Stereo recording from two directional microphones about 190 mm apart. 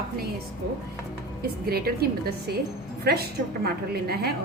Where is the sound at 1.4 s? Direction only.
55° right (ahead or behind).